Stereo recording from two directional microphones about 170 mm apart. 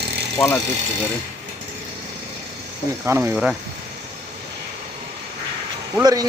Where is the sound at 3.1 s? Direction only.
15° right (ahead or behind).